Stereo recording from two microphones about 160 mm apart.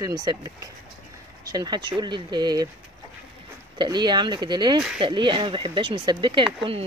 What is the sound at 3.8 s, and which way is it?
Speech, 25° right (ahead or behind).